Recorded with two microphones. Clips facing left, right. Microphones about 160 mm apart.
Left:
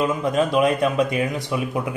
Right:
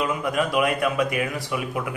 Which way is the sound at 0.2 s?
25° left (ahead or behind).